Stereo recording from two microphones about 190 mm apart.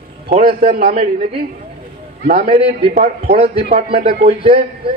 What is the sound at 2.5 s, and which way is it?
A man's voice, 30° right (ahead or behind).